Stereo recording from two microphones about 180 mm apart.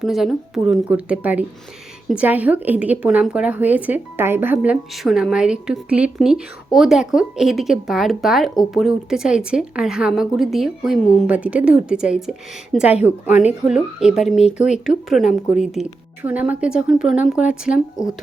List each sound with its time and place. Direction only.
0.0 s a woman's voice: centre (ahead or behind)
14.4 s speech: 40° left (ahead or behind)
15.1 s a woman's voice: centre (ahead or behind)